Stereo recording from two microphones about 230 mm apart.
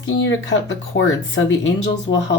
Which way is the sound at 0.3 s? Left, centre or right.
Left.